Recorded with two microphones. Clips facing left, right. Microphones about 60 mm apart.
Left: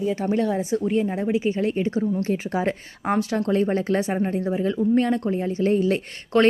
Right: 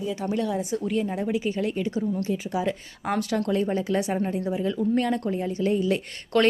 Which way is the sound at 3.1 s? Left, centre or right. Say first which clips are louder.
Left 3 dB; left.